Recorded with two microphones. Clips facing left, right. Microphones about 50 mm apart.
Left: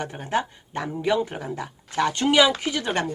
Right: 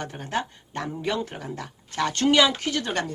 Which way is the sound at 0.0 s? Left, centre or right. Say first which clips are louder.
Left 3 dB; centre.